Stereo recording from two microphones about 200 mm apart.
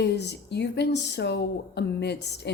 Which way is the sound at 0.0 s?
55° left (ahead or behind).